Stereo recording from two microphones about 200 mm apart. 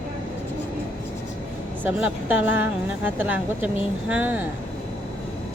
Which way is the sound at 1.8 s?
10° right (ahead or behind).